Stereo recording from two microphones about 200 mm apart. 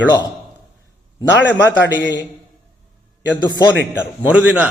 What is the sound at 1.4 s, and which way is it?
Speech, 60° left (ahead or behind).